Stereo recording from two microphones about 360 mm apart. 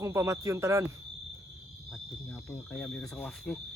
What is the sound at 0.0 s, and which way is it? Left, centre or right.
Speech, centre.